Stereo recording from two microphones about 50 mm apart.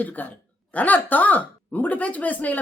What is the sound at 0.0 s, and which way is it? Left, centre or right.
A woman's voice, left.